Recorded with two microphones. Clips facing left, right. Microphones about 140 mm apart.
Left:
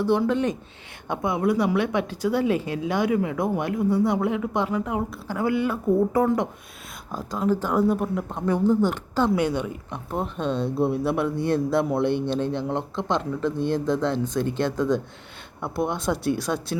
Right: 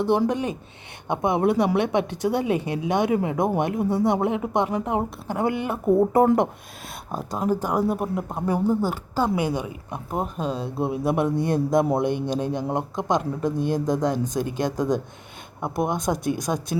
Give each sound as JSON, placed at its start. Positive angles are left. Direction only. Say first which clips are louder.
{"t": 0.3, "sound": "a woman's voice", "louder": "left 2 dB", "side_deg": -10}
{"t": 7.3, "sound": "speech", "louder": "left 1 dB", "side_deg": -15}